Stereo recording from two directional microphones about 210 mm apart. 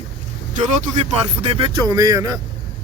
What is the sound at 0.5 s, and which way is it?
Speech, 35° right (ahead or behind).